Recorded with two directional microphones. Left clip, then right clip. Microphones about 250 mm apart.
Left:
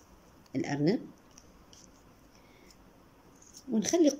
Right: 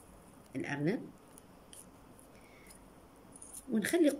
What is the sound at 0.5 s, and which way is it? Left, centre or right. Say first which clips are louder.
Speech: left 6 dB; centre.